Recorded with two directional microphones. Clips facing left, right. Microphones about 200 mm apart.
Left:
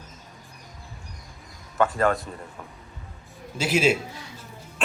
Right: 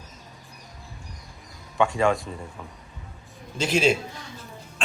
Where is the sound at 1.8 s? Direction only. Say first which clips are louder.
Even; centre (ahead or behind).